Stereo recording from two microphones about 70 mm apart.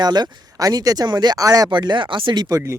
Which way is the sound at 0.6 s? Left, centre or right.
Right.